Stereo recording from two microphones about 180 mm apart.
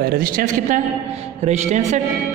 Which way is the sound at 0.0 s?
55° right (ahead or behind).